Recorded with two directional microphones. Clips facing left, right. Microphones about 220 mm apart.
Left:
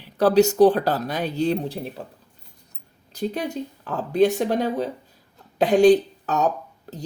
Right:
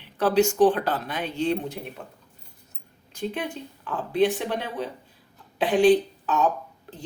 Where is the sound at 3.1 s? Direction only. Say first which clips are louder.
Left 4 dB; 40° left (ahead or behind).